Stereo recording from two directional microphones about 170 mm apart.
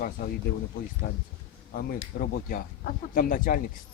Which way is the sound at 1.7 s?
60° left (ahead or behind).